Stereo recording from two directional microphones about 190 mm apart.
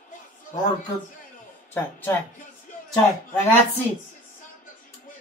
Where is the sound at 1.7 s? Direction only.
10° left (ahead or behind).